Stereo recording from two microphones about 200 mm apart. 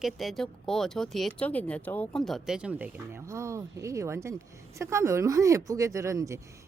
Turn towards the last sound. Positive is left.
turn(degrees=-15)  # may be behind; listen again after turning